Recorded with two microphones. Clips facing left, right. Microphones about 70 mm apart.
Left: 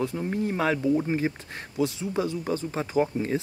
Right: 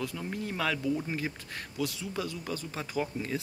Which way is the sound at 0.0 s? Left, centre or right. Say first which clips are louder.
Left 8 dB; left.